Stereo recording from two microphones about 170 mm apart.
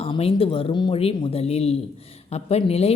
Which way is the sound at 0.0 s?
35° left (ahead or behind).